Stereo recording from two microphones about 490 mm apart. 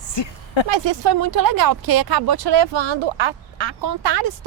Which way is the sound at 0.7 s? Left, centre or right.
Right.